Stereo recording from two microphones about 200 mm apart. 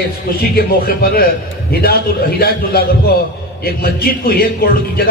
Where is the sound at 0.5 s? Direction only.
45° left (ahead or behind).